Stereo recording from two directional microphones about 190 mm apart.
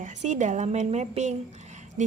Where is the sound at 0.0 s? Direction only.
40° right (ahead or behind).